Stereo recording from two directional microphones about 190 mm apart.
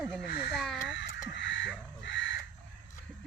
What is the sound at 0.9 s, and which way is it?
Crow, 70° left (ahead or behind).